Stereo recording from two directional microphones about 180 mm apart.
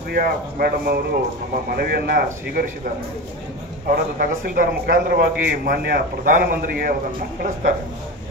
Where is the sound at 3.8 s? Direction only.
50° right (ahead or behind).